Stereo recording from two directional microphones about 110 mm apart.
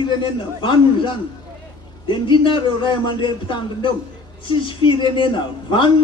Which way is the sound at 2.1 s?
45° left (ahead or behind).